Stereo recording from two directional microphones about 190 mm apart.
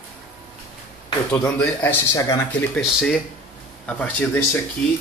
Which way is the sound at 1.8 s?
20° left (ahead or behind).